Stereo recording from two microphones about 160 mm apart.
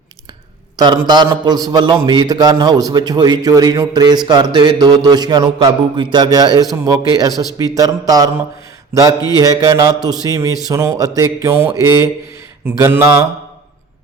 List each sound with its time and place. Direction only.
0.8 s a man's voice: 25° right (ahead or behind)
9.3 s a man's voice: 20° right (ahead or behind)